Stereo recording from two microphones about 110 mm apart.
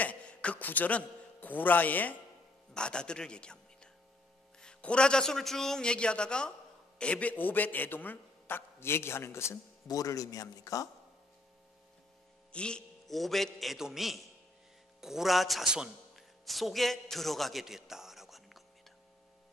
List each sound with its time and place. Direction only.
0.0 s a man's voice: 10° left (ahead or behind); by 10.9 s 30° left (ahead or behind)
12.5 s a man's voice: 10° left (ahead or behind)